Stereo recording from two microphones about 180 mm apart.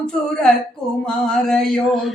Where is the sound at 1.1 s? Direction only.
5° left (ahead or behind).